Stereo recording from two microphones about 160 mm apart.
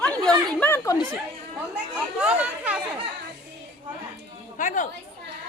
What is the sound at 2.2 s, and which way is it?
Speech, 5° right (ahead or behind).